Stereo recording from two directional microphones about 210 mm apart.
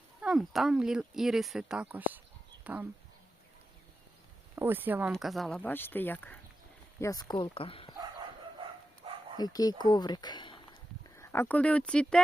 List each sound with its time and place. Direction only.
0.2 s speech: centre (ahead or behind)
4.5 s speech: 10° right (ahead or behind); by 7.9 s 25° left (ahead or behind)
9.0 s bow-wow: 30° right (ahead or behind)
9.4 s speech: 15° left (ahead or behind)